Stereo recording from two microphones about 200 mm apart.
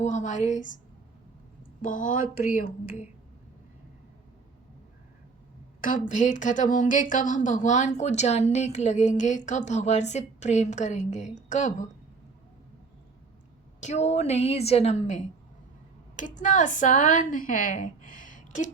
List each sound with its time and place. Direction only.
0.0 s speech: 35° left (ahead or behind)
1.8 s speech: 40° left (ahead or behind)
5.8 s speech: 40° left (ahead or behind)
13.8 s a woman's voice: 35° left (ahead or behind)